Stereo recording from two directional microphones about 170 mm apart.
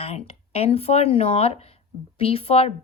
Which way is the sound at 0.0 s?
35° left (ahead or behind).